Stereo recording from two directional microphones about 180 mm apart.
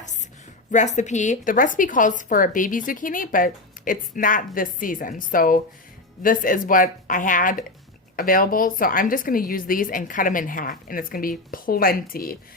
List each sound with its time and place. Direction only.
0.7 s a woman's voice: 40° left (ahead or behind)